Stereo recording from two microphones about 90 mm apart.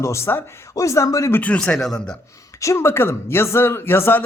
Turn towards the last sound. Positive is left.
turn(degrees=25)  # may be behind; listen again after turning